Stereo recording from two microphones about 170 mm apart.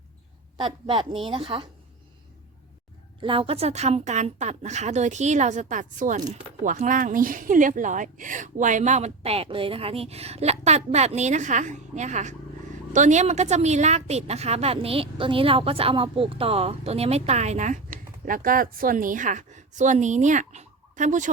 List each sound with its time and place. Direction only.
0.5 s a woman's voice: 30° right (ahead or behind)
3.2 s a woman's voice: 30° right (ahead or behind); by 21.2 s 45° right (ahead or behind)